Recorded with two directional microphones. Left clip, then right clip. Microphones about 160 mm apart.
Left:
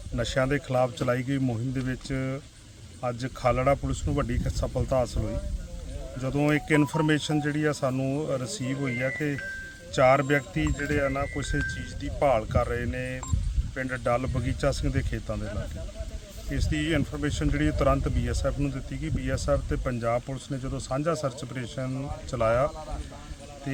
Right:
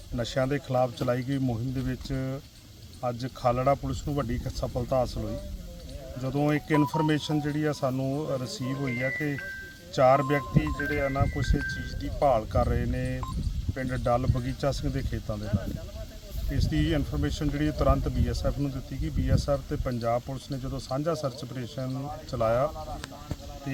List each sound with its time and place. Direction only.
0.2 s speech: 5° left (ahead or behind)
16.5 s speech: 5° left (ahead or behind)